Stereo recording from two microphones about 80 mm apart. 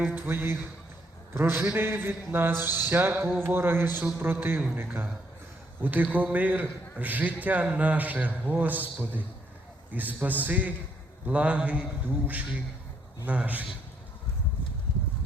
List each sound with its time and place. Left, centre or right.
0.0 s a man's voice: right
13.2 s a man's voice: right